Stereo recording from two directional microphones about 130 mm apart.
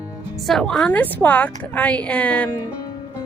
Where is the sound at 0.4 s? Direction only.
Centre (ahead or behind).